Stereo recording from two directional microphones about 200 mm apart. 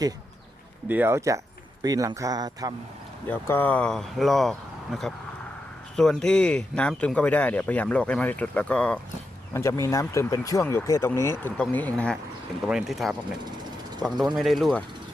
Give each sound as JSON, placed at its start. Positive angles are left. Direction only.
{"t": 0.9, "sound": "a man's voice", "side_deg": -10}
{"t": 3.2, "sound": "speech", "side_deg": 10}
{"t": 14.3, "sound": "speech", "side_deg": 0}